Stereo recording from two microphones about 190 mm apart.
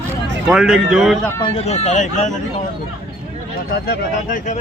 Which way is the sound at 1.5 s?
35° left (ahead or behind).